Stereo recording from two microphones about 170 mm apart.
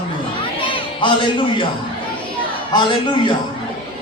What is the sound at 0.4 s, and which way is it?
Children playing, 30° left (ahead or behind).